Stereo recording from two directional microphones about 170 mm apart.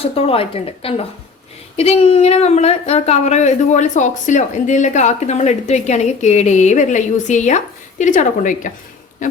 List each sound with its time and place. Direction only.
0.0 s speech: 35° left (ahead or behind)